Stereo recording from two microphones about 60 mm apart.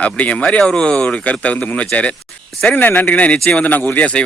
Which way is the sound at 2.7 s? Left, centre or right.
Left.